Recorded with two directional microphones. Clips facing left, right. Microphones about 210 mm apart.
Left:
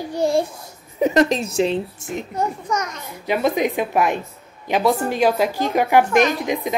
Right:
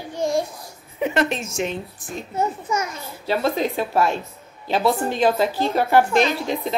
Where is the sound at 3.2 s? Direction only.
15° left (ahead or behind).